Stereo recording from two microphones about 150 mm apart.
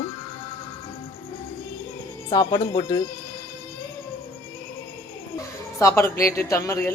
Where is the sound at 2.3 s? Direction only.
25° left (ahead or behind).